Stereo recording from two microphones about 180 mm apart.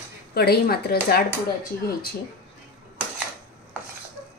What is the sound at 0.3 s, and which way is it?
Speech, 60° left (ahead or behind).